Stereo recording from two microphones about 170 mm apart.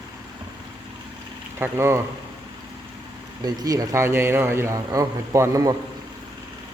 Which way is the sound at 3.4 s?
20° right (ahead or behind).